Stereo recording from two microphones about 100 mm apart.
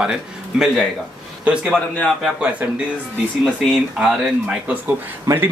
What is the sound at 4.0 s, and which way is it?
Speech, 15° right (ahead or behind).